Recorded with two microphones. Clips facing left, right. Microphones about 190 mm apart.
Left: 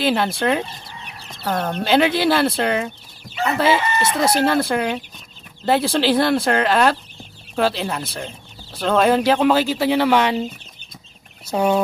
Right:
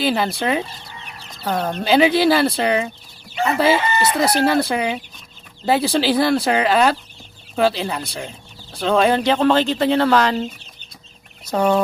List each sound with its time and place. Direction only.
0.0 s speech: centre (ahead or behind)
11.5 s fowl: 10° left (ahead or behind)